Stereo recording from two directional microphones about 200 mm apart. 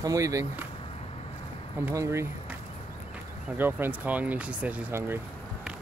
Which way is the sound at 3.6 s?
10° right (ahead or behind).